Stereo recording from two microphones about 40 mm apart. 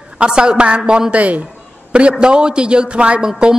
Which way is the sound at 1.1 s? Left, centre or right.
Right.